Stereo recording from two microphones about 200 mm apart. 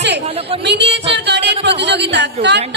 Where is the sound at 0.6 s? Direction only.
60° right (ahead or behind).